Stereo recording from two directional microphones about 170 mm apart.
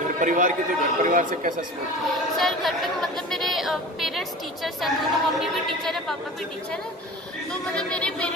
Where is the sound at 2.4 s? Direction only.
Centre (ahead or behind).